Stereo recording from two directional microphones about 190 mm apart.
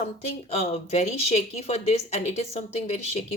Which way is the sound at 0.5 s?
35° left (ahead or behind).